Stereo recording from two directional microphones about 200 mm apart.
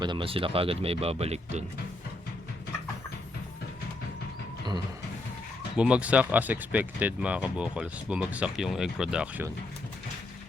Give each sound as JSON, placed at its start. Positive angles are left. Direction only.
{"t": 0.0, "sound": "speech", "side_deg": -25}
{"t": 5.7, "sound": "speech", "side_deg": -5}